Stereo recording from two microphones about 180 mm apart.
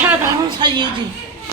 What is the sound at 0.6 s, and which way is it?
Speech, 25° right (ahead or behind).